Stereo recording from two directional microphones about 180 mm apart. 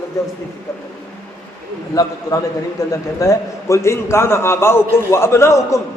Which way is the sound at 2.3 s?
20° left (ahead or behind).